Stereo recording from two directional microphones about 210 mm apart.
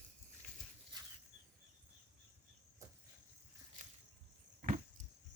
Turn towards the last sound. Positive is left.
turn(degrees=-40)  # may be behind; listen again after turning